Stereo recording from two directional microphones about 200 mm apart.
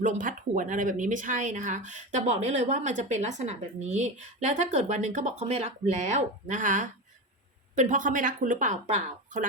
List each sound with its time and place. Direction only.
0.0 s speech: 40° right (ahead or behind)